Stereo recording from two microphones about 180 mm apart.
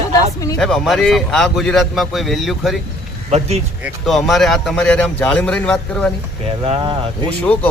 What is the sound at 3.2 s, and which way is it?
Speech, 35° right (ahead or behind).